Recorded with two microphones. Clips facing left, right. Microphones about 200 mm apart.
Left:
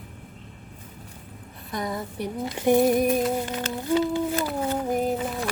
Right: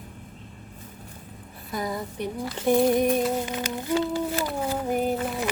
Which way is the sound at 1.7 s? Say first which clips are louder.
Even; centre (ahead or behind).